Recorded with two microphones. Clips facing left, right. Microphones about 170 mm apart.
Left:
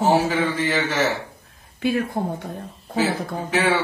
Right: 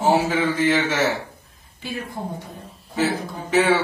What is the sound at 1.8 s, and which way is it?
Speech, 55° left (ahead or behind).